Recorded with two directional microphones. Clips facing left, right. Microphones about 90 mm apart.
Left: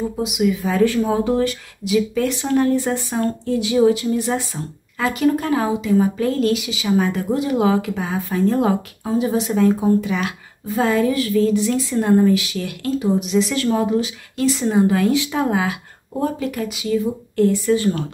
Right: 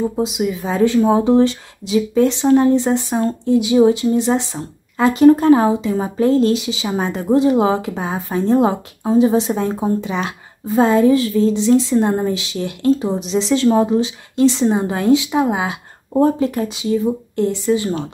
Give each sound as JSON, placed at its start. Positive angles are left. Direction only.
{"t": 0.1, "sound": "speech", "side_deg": -30}
{"t": 16.1, "sound": "speech", "side_deg": -30}